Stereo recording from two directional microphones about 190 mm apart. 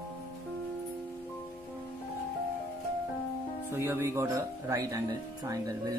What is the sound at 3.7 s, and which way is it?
Speech, 10° right (ahead or behind).